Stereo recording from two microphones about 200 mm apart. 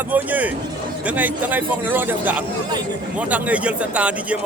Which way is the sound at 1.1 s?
10° right (ahead or behind).